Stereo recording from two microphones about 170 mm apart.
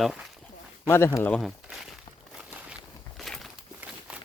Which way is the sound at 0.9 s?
15° left (ahead or behind).